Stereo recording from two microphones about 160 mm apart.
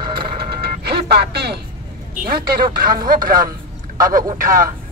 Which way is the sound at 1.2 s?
90° right.